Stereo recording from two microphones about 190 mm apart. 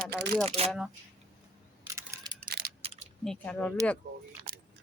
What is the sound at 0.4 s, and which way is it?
Speech, 35° right (ahead or behind).